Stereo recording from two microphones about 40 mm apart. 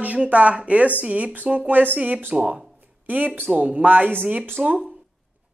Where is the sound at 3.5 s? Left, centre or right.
Right.